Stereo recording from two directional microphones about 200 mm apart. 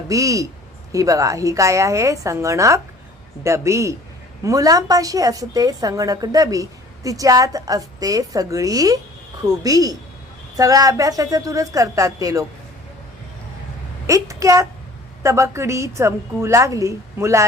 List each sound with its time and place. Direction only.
0.1 s a woman's voice: 15° right (ahead or behind)
14.1 s a woman's voice: 15° right (ahead or behind)